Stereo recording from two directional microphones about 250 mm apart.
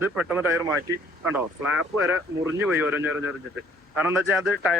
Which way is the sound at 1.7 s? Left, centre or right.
Right.